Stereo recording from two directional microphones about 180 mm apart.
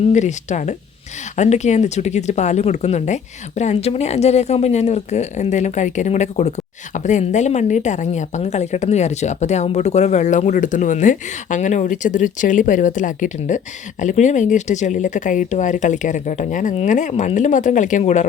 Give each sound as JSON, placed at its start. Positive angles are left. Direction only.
{"t": 0.0, "sound": "a woman's voice", "side_deg": 40}